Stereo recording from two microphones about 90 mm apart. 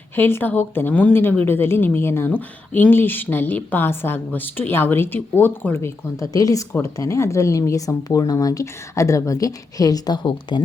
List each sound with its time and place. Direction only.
0.2 s a woman's voice: 25° left (ahead or behind); by 10.6 s 55° left (ahead or behind)